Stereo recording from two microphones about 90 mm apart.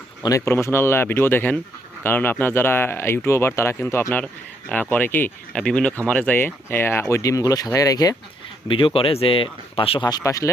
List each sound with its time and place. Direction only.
0.2 s speech: 35° left (ahead or behind)
4.7 s speech: 20° left (ahead or behind); by 8.1 s 45° left (ahead or behind)
8.6 s speech: 75° left (ahead or behind)
10.0 s speech: 45° left (ahead or behind)